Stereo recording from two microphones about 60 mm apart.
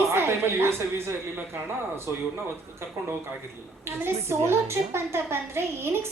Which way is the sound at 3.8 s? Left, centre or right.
Right.